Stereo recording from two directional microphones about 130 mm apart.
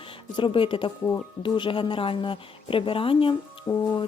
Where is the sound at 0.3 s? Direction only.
40° left (ahead or behind).